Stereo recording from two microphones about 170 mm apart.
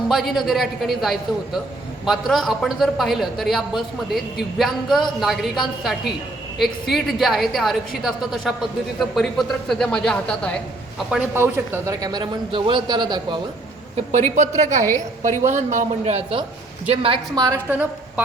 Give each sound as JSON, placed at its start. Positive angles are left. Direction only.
{"t": 0.1, "sound": "a man's voice", "side_deg": 0}
{"t": 11.1, "sound": "speech", "side_deg": -10}
{"t": 13.9, "sound": "a woman's voice", "side_deg": -45}